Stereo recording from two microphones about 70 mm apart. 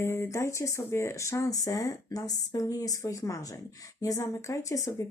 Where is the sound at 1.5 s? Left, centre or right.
Left.